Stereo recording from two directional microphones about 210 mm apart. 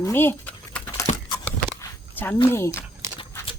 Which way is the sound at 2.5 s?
10° left (ahead or behind).